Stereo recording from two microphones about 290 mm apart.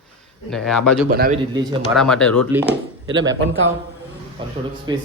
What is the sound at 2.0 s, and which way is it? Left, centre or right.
A man's voice, centre.